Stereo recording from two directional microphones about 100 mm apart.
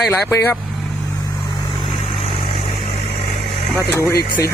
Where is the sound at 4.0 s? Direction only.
30° left (ahead or behind).